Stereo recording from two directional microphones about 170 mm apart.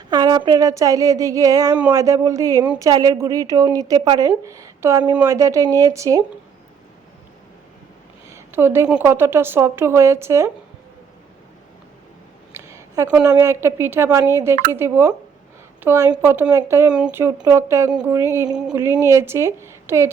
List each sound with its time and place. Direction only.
0.1 s speech: 25° right (ahead or behind)
8.3 s a woman's voice: 15° right (ahead or behind)
12.5 s a sound: 15° right (ahead or behind)
13.2 s a woman's voice: 15° right (ahead or behind)